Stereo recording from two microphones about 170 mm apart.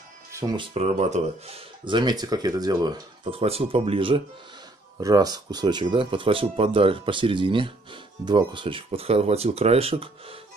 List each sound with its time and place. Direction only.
0.3 s music: 20° right (ahead or behind)
0.6 s speech: 40° right (ahead or behind)
5.0 s speech: 25° right (ahead or behind)